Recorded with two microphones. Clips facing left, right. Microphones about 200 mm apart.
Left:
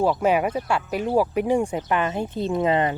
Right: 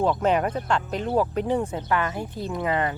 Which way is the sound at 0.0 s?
10° left (ahead or behind).